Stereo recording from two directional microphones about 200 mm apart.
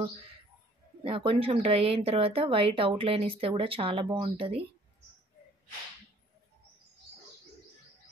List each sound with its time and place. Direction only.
1.0 s speech: 30° right (ahead or behind)